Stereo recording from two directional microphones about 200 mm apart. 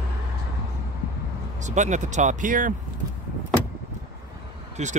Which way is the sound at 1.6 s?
35° right (ahead or behind).